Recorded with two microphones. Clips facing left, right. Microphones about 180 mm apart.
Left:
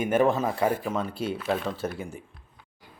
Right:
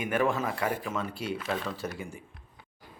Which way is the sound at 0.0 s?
25° left (ahead or behind).